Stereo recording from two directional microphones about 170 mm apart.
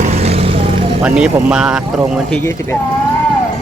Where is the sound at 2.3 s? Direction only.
15° left (ahead or behind).